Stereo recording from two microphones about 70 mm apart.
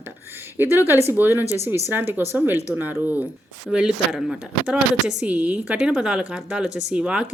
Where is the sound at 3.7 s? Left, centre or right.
Centre.